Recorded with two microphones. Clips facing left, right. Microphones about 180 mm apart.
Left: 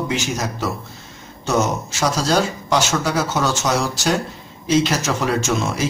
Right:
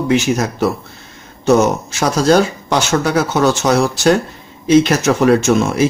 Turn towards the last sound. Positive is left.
turn(degrees=-55)  # may be behind; listen again after turning